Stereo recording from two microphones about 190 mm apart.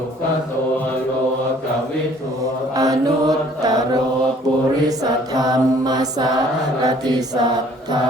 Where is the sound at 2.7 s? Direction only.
20° right (ahead or behind).